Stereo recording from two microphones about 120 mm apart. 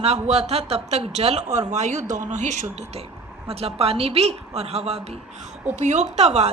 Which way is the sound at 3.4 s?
55° right (ahead or behind).